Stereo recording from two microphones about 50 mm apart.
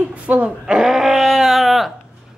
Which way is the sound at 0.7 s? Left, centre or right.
Centre.